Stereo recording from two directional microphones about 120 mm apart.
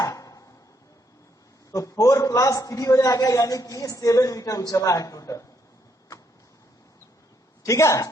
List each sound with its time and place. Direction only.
0.0 s a sound: 30° left (ahead or behind)
1.7 s a man's voice: 30° left (ahead or behind)
7.6 s a man's voice: 25° left (ahead or behind)